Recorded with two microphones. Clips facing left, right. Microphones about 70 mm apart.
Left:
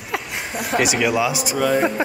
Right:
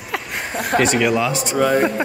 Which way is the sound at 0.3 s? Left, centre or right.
Right.